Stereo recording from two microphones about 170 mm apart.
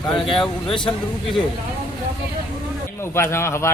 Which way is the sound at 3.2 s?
15° left (ahead or behind).